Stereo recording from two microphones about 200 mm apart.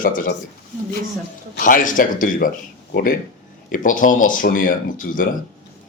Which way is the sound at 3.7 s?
40° left (ahead or behind).